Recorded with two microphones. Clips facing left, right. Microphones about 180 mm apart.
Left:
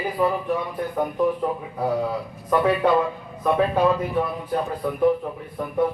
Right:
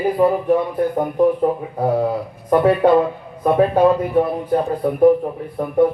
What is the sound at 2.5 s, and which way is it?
A man's voice, 50° right (ahead or behind).